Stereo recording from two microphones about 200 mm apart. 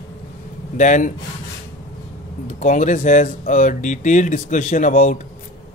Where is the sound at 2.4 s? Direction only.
40° left (ahead or behind).